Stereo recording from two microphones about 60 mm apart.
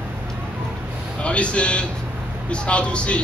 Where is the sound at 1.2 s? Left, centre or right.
Centre.